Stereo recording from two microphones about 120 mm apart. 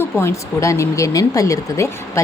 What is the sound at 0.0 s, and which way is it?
Speech, 20° left (ahead or behind).